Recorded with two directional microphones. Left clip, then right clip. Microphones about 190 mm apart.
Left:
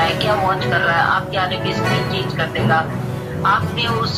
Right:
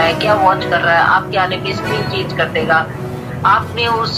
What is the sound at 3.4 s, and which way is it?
Speech, 50° right (ahead or behind).